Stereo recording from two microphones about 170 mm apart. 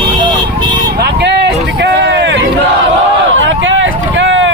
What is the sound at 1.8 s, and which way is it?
Speech, 90° right.